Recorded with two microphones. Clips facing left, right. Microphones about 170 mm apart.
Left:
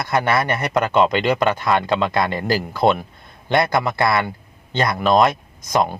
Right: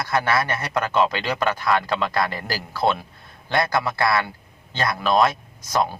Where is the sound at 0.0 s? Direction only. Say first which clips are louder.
Left 3 dB; 20° left (ahead or behind).